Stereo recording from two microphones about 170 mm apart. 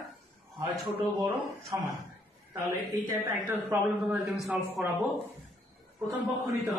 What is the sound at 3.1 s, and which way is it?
A man's voice, 15° right (ahead or behind).